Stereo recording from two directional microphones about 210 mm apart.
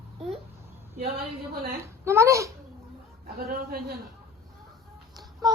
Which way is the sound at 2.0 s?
15° right (ahead or behind).